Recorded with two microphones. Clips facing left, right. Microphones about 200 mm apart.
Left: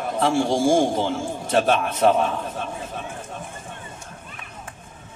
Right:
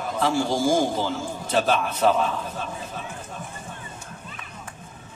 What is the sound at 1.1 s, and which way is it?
Speech, 55° left (ahead or behind).